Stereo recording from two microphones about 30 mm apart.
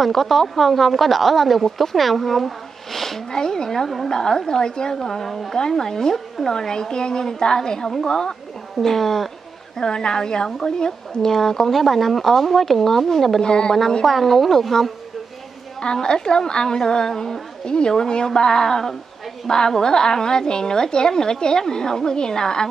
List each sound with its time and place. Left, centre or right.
0.0 s speech: centre
3.3 s a woman's voice: left
8.8 s speech: centre
9.8 s speech: left; by 13.4 s centre
13.4 s a woman's voice: left
14.0 s speech: centre
15.8 s a woman's voice: left